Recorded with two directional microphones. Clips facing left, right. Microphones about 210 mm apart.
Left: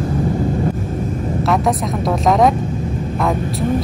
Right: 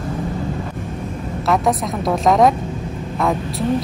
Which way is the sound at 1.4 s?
Centre (ahead or behind).